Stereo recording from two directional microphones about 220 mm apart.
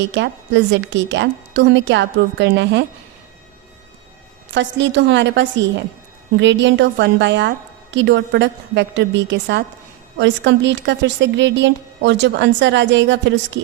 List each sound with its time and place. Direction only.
0.1 s a woman's voice: 55° right (ahead or behind)
4.5 s a woman's voice: 55° right (ahead or behind)